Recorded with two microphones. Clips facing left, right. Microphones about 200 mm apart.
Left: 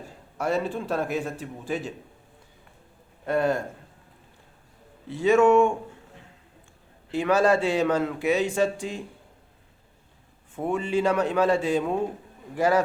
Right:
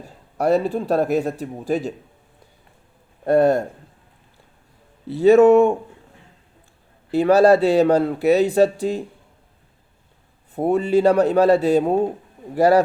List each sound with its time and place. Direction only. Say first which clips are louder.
0.3 s speech: right 8 dB; 40° right (ahead or behind)
3.2 s speech: right 8 dB; 40° right (ahead or behind)
5.0 s speech: right 7 dB; 35° right (ahead or behind)
7.1 s speech: right 8 dB; 35° right (ahead or behind)
10.5 s speech: right 8 dB; 35° right (ahead or behind)